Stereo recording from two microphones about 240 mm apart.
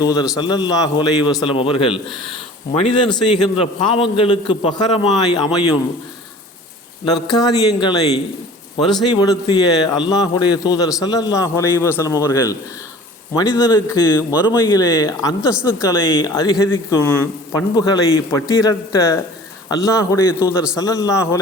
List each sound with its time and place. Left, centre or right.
0.0 s a man's voice: centre
7.0 s a man's voice: centre
9.0 s a man's voice: centre